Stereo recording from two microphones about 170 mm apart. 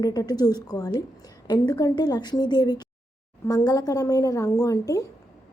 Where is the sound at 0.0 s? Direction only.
25° left (ahead or behind).